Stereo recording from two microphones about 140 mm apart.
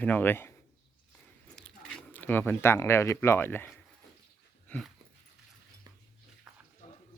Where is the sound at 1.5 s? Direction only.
5° left (ahead or behind).